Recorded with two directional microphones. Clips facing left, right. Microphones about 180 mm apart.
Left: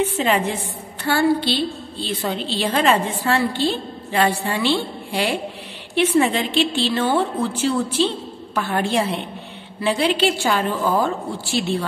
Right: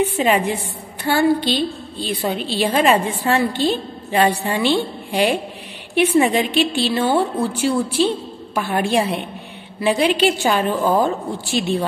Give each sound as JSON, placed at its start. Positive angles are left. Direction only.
{"t": 0.0, "sound": "a woman's voice", "side_deg": -15}